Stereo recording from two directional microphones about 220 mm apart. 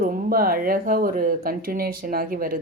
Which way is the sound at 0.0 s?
40° right (ahead or behind).